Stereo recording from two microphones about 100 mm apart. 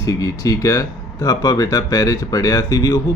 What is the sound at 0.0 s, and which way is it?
Speech, 35° left (ahead or behind).